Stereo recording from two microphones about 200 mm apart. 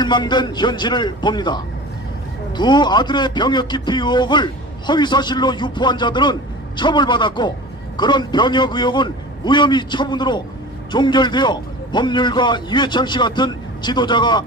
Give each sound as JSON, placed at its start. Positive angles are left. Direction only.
{"t": 0.0, "sound": "a man's voice", "side_deg": 20}